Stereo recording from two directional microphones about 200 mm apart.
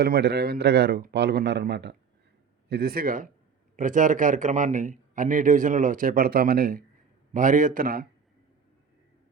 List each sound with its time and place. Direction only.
0.0 s a man's voice: 55° right (ahead or behind)